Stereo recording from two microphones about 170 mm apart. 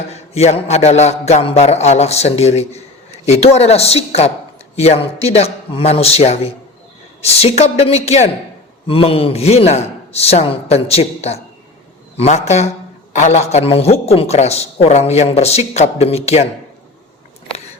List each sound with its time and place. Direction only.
0.1 s a man's voice: 40° left (ahead or behind)